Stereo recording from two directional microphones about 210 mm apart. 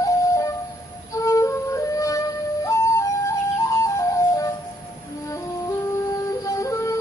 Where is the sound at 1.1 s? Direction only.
15° left (ahead or behind).